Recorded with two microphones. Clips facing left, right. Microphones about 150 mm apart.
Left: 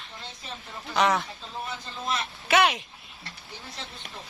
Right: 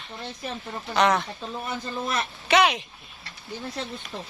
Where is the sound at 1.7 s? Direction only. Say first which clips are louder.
Right 3 dB; 55° right (ahead or behind).